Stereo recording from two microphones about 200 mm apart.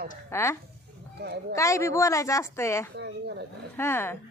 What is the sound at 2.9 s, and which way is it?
Speech, 60° right (ahead or behind).